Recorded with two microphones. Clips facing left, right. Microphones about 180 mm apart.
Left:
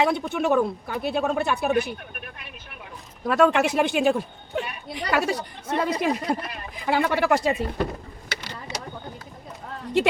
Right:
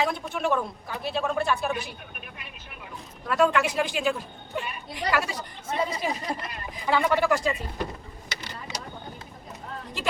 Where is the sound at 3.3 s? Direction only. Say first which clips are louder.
Left 3 dB; 65° left (ahead or behind).